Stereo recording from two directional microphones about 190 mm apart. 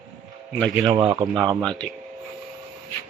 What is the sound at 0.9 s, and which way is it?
Speech, 20° right (ahead or behind).